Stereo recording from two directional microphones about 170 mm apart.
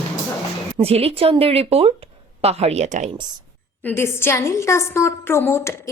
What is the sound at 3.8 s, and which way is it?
A woman's voice, 15° left (ahead or behind).